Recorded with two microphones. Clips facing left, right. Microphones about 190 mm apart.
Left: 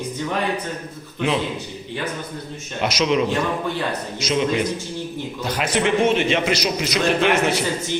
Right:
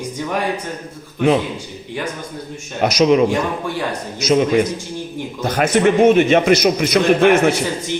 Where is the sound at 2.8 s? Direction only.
40° right (ahead or behind).